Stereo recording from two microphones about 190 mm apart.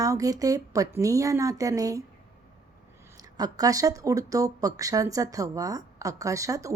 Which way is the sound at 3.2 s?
20° right (ahead or behind).